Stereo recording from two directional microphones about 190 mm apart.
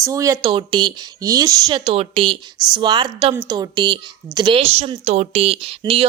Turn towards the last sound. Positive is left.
turn(degrees=-30)  # may be behind; listen again after turning